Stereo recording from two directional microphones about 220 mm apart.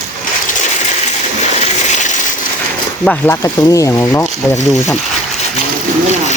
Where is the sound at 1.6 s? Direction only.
35° left (ahead or behind).